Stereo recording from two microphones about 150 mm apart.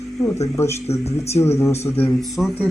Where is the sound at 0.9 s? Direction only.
45° left (ahead or behind).